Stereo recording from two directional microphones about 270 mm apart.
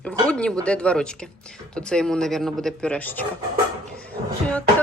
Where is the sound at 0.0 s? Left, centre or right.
Centre.